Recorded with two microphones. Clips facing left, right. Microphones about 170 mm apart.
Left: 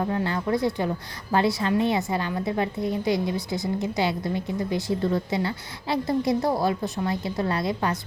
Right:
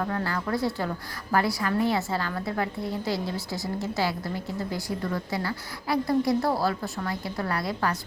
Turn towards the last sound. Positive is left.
turn(degrees=20)  # may be behind; listen again after turning